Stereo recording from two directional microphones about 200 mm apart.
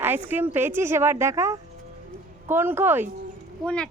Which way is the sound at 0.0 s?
10° right (ahead or behind).